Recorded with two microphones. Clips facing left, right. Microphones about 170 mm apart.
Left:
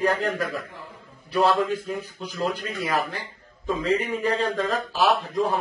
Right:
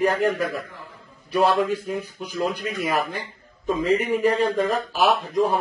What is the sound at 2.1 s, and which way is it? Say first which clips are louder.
A man's voice: right 1 dB; 15° right (ahead or behind).